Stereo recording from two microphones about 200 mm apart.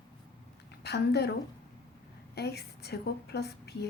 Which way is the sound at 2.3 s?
55° left (ahead or behind).